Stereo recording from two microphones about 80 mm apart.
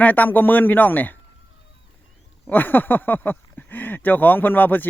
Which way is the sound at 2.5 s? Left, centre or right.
Left.